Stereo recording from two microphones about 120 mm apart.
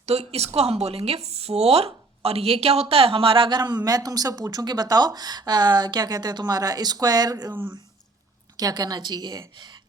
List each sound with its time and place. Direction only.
0.0 s speech: 60° right (ahead or behind); by 7.5 s 30° right (ahead or behind)
7.5 s speech: 15° right (ahead or behind)
8.5 s speech: 35° right (ahead or behind)